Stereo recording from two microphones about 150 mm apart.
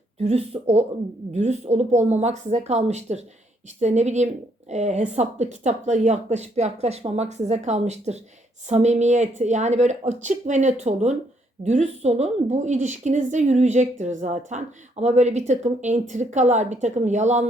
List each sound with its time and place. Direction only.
0.2 s speech: 45° right (ahead or behind)